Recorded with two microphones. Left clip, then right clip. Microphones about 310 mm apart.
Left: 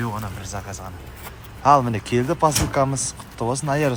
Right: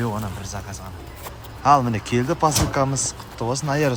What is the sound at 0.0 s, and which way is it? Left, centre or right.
Speech, centre.